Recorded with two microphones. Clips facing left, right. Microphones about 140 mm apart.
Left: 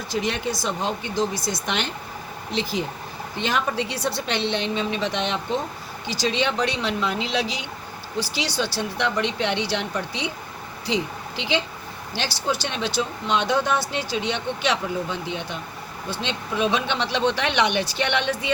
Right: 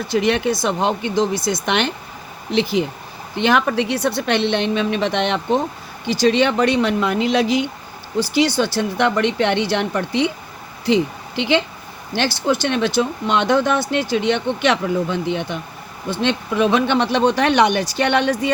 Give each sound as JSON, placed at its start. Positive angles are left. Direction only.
{"t": 0.1, "sound": "a woman's voice", "side_deg": -70}